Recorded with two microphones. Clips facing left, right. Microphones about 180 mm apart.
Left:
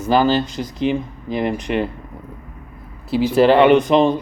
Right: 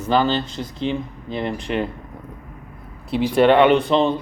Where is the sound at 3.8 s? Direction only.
15° left (ahead or behind).